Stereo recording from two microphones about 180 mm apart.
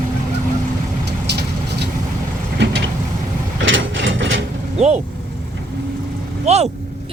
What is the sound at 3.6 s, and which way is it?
Ratchet, 90° right.